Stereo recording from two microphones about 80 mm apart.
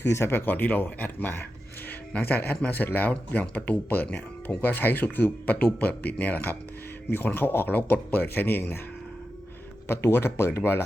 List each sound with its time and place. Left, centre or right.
0.0 s speech: left
9.8 s speech: left